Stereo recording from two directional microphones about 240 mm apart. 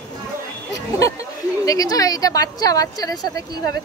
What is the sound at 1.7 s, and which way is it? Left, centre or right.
A woman's voice, centre.